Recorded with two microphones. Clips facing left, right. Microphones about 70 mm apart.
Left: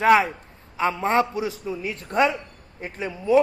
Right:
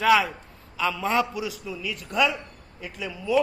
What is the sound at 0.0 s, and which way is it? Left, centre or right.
A man's voice, left.